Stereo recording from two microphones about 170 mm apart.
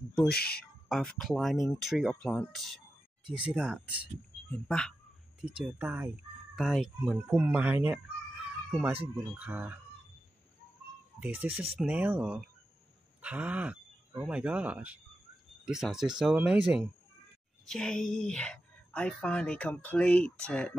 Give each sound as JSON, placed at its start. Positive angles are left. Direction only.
{"t": 0.4, "sound": "speech", "side_deg": 65}
{"t": 0.8, "sound": "speech", "side_deg": 0}
{"t": 4.5, "sound": "speech", "side_deg": 5}
{"t": 5.4, "sound": "speech", "side_deg": -5}
{"t": 11.1, "sound": "speech", "side_deg": -10}